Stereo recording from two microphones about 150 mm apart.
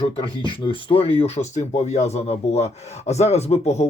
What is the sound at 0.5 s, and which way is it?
Speech, 35° left (ahead or behind).